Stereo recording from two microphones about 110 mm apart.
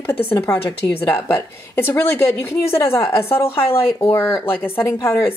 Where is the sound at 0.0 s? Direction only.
20° left (ahead or behind).